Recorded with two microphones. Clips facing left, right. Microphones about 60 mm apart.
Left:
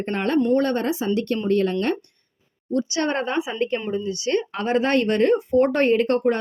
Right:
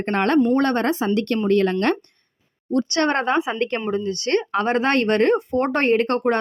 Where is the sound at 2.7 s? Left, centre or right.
Right.